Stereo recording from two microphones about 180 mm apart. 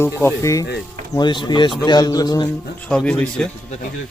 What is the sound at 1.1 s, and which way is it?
A man's voice, 25° left (ahead or behind).